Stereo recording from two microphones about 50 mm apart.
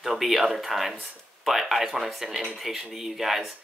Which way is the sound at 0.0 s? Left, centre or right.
Centre.